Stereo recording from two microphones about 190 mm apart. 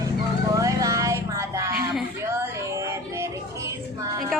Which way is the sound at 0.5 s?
15° right (ahead or behind).